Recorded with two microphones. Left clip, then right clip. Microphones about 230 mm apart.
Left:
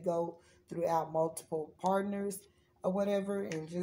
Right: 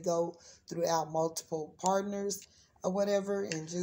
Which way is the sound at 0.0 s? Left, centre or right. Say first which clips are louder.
Right 2 dB; right.